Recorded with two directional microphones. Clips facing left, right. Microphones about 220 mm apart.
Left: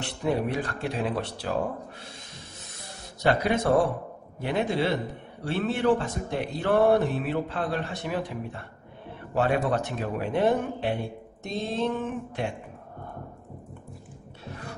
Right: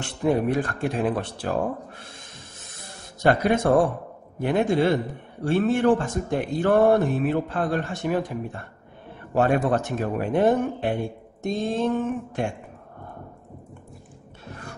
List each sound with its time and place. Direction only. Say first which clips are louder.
0.0 s speech: right 4 dB; 50° right (ahead or behind)
3.2 s speech: right 4 dB; 50° right (ahead or behind)